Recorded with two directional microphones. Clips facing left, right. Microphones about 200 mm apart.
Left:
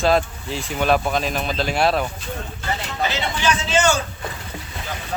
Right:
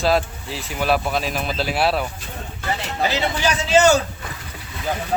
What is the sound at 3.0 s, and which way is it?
Speech, 35° right (ahead or behind).